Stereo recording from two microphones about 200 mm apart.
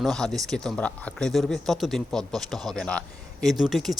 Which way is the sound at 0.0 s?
Centre (ahead or behind).